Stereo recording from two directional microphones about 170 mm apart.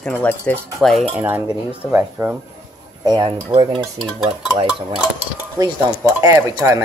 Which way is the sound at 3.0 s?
25° right (ahead or behind).